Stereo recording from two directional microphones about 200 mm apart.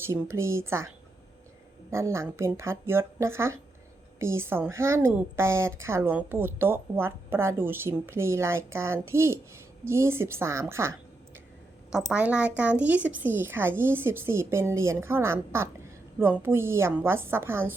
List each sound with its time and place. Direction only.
0.0 s speech: 15° right (ahead or behind)
1.9 s speech: 15° right (ahead or behind)
11.9 s speech: 5° right (ahead or behind)